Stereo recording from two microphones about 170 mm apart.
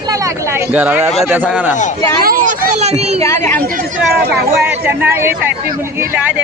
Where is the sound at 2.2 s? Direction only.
60° right (ahead or behind).